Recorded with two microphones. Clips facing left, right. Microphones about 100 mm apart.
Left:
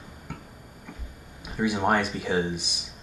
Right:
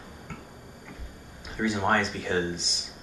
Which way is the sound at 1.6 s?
10° left (ahead or behind).